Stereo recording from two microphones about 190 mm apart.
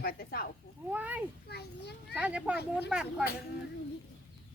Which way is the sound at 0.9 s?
10° right (ahead or behind).